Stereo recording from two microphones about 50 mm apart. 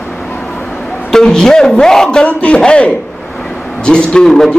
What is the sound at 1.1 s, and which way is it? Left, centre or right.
A man's voice, centre.